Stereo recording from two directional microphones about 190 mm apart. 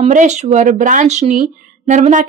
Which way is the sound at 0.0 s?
40° right (ahead or behind).